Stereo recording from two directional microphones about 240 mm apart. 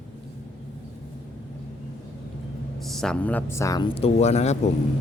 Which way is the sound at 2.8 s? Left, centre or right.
Centre.